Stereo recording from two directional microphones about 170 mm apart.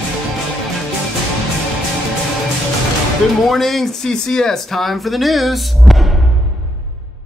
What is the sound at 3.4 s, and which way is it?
Speech, centre (ahead or behind).